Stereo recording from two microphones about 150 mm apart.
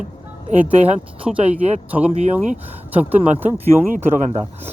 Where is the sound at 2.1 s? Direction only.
45° right (ahead or behind).